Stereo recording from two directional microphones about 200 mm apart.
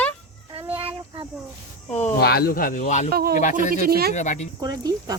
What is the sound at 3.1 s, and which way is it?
Speech, 50° right (ahead or behind).